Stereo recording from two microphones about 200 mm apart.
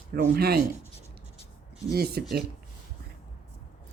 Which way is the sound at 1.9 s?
50° right (ahead or behind).